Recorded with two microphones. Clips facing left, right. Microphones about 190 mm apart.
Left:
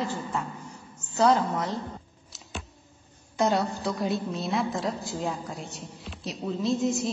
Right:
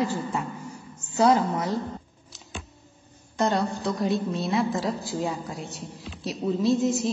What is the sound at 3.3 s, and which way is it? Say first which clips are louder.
A woman's voice: even; 5° left (ahead or behind).